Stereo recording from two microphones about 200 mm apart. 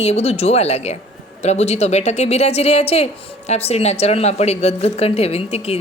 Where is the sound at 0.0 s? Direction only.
30° left (ahead or behind).